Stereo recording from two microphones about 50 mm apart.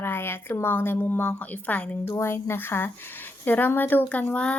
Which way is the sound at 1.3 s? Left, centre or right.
Left.